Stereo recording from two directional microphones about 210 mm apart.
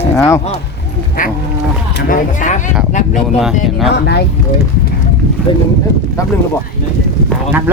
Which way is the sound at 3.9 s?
50° left (ahead or behind).